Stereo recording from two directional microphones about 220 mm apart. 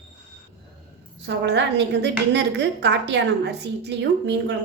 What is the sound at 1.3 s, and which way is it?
A woman's voice, 50° right (ahead or behind).